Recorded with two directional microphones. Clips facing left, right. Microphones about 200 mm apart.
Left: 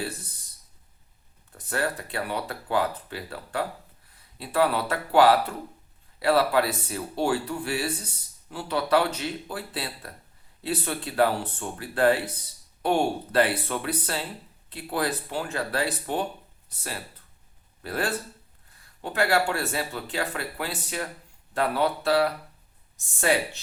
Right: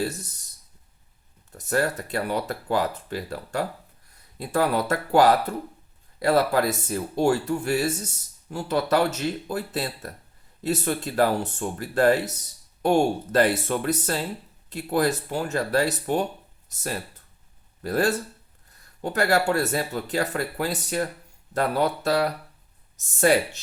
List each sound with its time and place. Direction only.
0.0 s speech: 45° right (ahead or behind)
1.5 s speech: 40° right (ahead or behind)